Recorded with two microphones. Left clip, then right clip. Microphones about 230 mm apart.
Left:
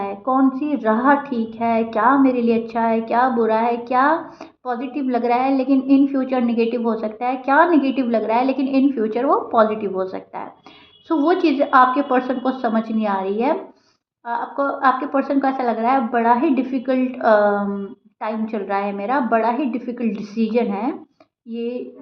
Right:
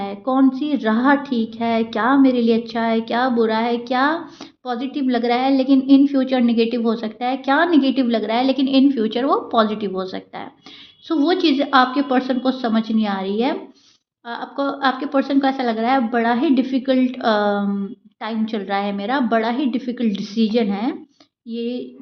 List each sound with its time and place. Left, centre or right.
0.0 s a woman's voice: right